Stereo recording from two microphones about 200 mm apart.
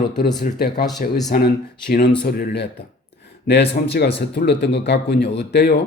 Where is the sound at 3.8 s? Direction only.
45° left (ahead or behind).